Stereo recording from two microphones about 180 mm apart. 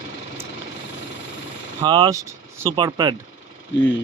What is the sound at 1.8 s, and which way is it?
Speech, 25° right (ahead or behind).